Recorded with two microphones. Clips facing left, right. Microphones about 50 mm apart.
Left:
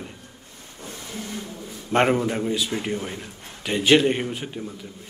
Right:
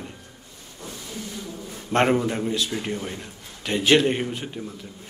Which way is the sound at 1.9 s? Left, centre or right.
Centre.